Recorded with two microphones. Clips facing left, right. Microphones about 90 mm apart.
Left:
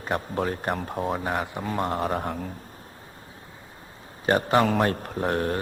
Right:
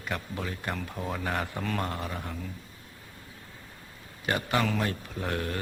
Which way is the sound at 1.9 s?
45° left (ahead or behind).